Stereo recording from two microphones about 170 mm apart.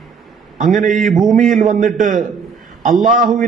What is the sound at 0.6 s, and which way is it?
A man's voice, 55° right (ahead or behind).